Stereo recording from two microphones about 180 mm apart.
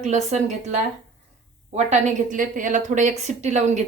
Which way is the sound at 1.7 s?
40° right (ahead or behind).